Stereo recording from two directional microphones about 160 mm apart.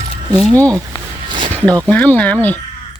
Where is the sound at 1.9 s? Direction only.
10° left (ahead or behind).